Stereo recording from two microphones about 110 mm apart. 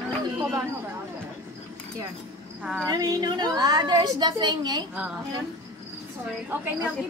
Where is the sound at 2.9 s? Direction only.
35° right (ahead or behind).